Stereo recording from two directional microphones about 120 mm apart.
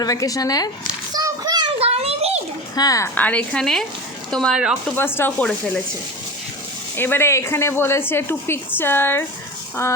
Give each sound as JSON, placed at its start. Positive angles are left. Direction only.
{"t": 0.0, "sound": "speech", "side_deg": 30}
{"t": 1.1, "sound": "a sound", "side_deg": -35}
{"t": 1.8, "sound": "a sound", "side_deg": -55}
{"t": 2.7, "sound": "speech", "side_deg": 30}
{"t": 3.2, "sound": "a woman's voice", "side_deg": 10}
{"t": 4.9, "sound": "a woman's voice", "side_deg": 20}
{"t": 6.9, "sound": "speech", "side_deg": 20}